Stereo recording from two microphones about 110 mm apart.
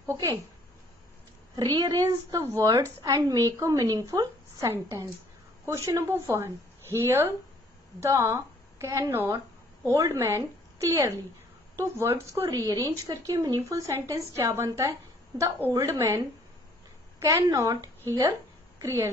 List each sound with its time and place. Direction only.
0.0 s speech: 25° right (ahead or behind)
1.6 s a woman's voice: 40° right (ahead or behind)